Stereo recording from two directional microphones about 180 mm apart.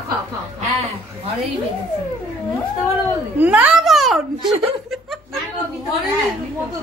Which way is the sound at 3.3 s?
10° right (ahead or behind).